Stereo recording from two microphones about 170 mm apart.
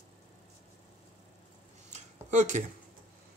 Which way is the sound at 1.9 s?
45° right (ahead or behind).